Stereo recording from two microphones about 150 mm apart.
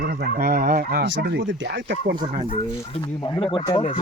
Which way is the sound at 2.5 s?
35° left (ahead or behind).